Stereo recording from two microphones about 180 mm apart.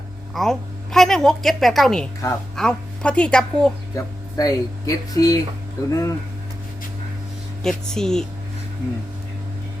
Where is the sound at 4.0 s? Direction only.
20° left (ahead or behind).